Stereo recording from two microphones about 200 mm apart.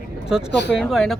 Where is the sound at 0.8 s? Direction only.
Centre (ahead or behind).